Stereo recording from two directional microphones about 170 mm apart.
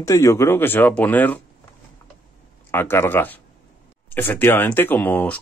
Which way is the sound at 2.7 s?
15° left (ahead or behind).